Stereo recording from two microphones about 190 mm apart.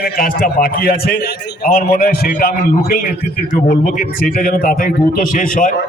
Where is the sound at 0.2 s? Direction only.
50° left (ahead or behind).